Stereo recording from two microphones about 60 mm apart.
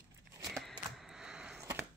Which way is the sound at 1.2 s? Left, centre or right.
Centre.